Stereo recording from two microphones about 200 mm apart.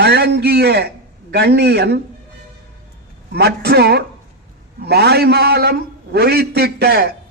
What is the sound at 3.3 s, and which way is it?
A man's voice, 55° right (ahead or behind).